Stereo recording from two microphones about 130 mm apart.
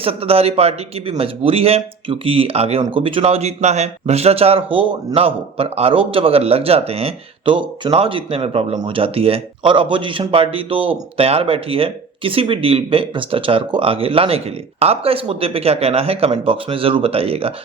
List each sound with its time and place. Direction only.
0.0 s speech: 50° right (ahead or behind)